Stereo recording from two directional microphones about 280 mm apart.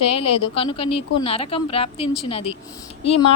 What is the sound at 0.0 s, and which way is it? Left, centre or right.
A woman's voice, left.